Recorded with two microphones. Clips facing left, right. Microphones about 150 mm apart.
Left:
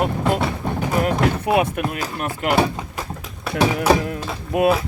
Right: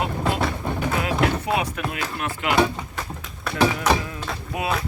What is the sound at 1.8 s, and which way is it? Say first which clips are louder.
Speech: left 5 dB; 55° left (ahead or behind).